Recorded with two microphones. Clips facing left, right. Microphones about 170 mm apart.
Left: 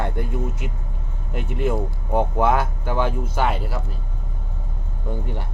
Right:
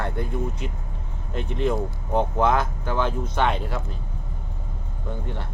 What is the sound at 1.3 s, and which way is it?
Speech, 10° left (ahead or behind).